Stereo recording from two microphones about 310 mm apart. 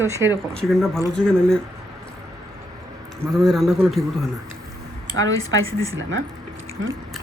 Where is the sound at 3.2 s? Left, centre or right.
Centre.